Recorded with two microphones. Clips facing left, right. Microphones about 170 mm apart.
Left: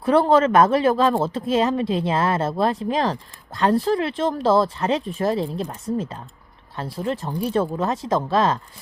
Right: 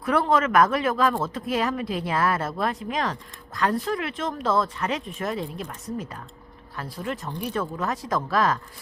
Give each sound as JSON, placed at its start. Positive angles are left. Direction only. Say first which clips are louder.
{"t": 0.0, "sound": "speech", "louder": "left 6 dB", "side_deg": 30}